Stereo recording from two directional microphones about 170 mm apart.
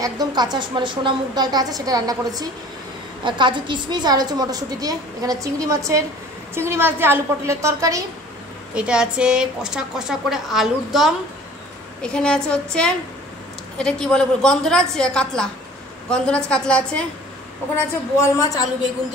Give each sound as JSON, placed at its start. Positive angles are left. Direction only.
{"t": 0.0, "sound": "a woman's voice", "side_deg": -25}
{"t": 8.7, "sound": "a woman's voice", "side_deg": -5}
{"t": 17.7, "sound": "a woman's voice", "side_deg": 20}